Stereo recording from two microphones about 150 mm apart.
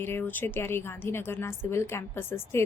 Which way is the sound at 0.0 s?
15° left (ahead or behind).